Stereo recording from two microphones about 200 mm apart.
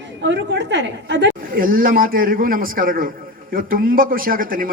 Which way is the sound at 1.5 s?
45° right (ahead or behind).